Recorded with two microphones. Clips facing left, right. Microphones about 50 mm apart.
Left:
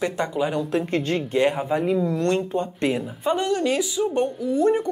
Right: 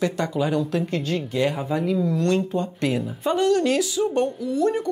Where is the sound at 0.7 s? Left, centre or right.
Left.